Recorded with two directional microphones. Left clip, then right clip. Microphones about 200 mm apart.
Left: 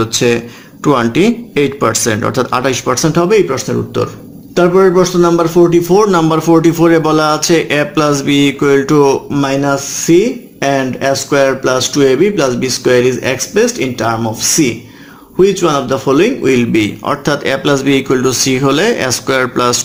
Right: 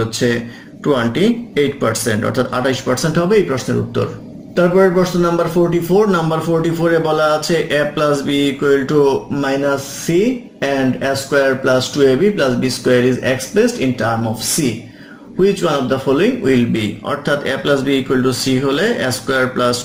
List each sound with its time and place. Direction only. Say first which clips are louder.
0.9 s a man's voice: left 4 dB; 50° left (ahead or behind)
15.4 s a man's voice: left 4 dB; 50° left (ahead or behind)